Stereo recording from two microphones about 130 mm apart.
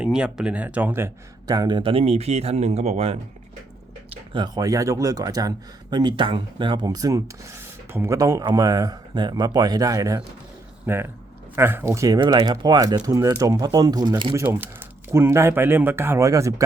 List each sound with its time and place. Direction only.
0.0 s speech: 5° right (ahead or behind)
1.5 s speech: 35° right (ahead or behind); by 3.2 s 55° right (ahead or behind)
4.1 s speech: 40° right (ahead or behind)
10.8 s speech: 15° right (ahead or behind); by 14.3 s 35° right (ahead or behind)
14.6 s speech: 15° right (ahead or behind)